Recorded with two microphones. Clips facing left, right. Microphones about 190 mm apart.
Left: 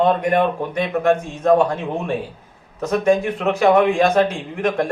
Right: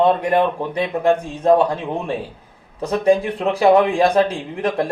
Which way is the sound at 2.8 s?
30° right (ahead or behind).